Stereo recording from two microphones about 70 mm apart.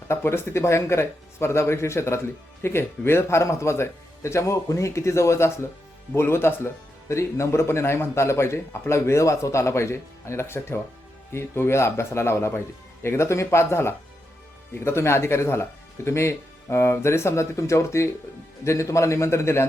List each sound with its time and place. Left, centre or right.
0.1 s a man's voice: left